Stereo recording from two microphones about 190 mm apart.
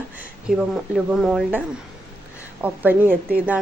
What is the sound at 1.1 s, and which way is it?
Speech, 5° right (ahead or behind).